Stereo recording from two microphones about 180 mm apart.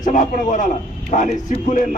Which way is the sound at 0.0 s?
45° left (ahead or behind).